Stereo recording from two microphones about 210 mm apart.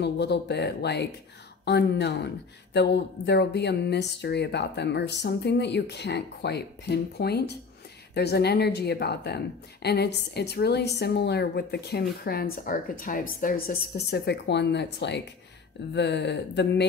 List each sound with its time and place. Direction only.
0.0 s speech: 55° left (ahead or behind)